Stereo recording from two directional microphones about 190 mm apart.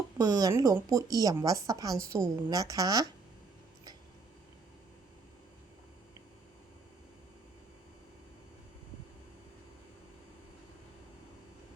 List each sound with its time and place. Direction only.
0.2 s speech: 20° right (ahead or behind)